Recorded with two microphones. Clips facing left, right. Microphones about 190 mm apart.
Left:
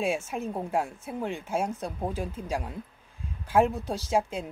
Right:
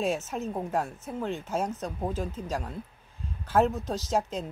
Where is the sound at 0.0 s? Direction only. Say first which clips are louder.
Even; 10° left (ahead or behind).